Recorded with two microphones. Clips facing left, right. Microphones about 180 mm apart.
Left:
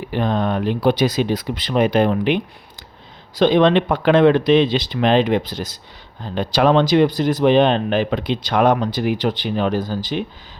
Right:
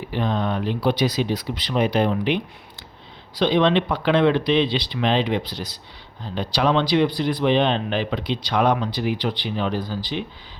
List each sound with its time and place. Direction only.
0.1 s speech: 50° left (ahead or behind)